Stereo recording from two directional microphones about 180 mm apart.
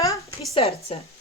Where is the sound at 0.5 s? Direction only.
30° left (ahead or behind).